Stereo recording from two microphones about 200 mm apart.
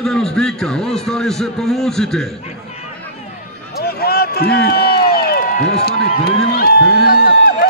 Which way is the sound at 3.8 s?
50° left (ahead or behind).